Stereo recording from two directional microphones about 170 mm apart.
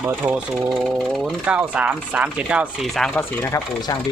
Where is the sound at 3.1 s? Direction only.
15° left (ahead or behind).